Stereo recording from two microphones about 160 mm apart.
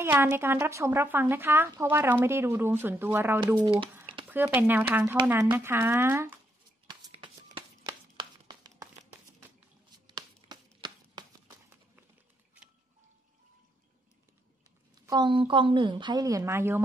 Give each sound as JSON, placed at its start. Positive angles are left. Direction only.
{"t": 0.0, "sound": "a woman's voice", "side_deg": -15}
{"t": 3.5, "sound": "speech", "side_deg": -30}
{"t": 4.6, "sound": "a woman's voice", "side_deg": -10}
{"t": 7.4, "sound": "chopping", "side_deg": -30}
{"t": 10.0, "sound": "a sound", "side_deg": -30}
{"t": 15.0, "sound": "a woman's voice", "side_deg": -25}